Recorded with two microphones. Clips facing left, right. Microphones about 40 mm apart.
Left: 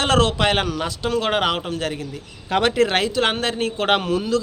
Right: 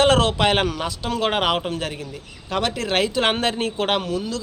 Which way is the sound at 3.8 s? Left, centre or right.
Centre.